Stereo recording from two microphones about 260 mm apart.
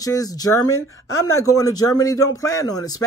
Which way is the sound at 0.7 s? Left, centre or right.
Left.